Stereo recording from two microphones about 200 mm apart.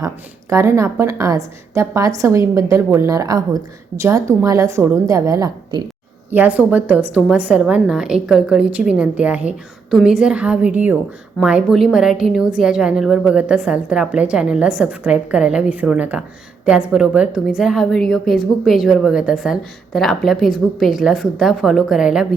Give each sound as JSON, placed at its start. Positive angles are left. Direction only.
{"t": 0.5, "sound": "a woman's voice", "side_deg": -15}
{"t": 6.3, "sound": "a woman's voice", "side_deg": -10}